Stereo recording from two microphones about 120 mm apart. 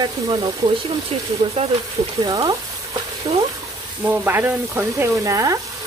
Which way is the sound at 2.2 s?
35° right (ahead or behind).